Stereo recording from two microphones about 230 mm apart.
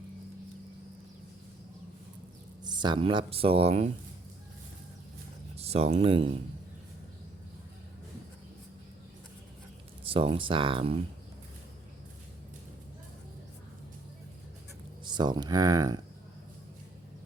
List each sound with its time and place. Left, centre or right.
2.6 s speech: centre
5.5 s speech: right
10.1 s speech: right
15.0 s speech: centre